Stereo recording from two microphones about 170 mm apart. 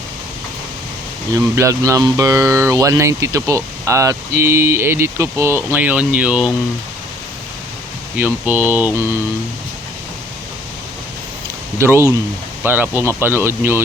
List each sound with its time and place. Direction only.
1.3 s speech: 15° right (ahead or behind)
8.1 s speech: 10° right (ahead or behind)
11.8 s speech: 15° right (ahead or behind)